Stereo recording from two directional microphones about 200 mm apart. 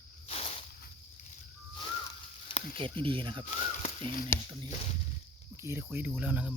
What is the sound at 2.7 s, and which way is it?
Speech, 25° right (ahead or behind).